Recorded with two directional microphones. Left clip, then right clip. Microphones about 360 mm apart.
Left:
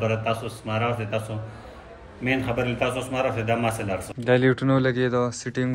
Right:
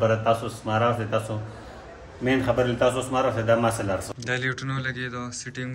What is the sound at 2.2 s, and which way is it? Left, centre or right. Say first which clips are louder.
A man's voice: right 2 dB; right.